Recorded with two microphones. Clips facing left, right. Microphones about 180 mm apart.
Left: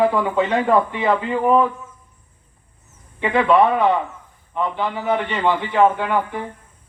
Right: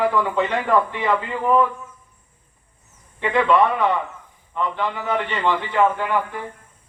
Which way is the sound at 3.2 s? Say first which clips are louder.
Left 2 dB; 20° left (ahead or behind).